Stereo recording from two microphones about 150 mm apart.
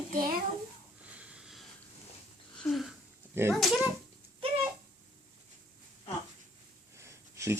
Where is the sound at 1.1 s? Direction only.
10° right (ahead or behind).